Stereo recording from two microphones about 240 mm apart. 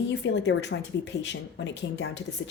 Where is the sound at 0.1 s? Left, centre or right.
Left.